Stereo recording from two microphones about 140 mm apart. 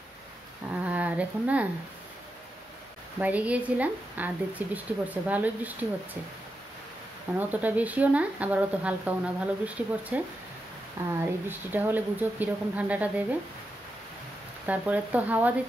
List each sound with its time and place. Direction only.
0.8 s a sound: 10° right (ahead or behind)
3.2 s speech: 10° right (ahead or behind)
7.3 s speech: 10° right (ahead or behind)
14.7 s speech: 10° right (ahead or behind)